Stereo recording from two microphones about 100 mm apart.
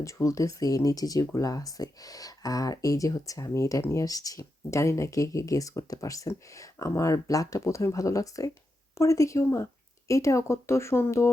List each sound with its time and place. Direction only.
0.0 s speech: 30° left (ahead or behind)